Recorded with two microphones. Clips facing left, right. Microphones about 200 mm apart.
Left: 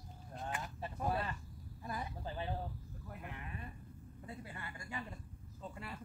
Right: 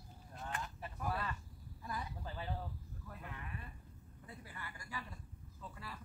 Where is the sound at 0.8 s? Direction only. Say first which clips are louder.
Left 5 dB; 25° left (ahead or behind).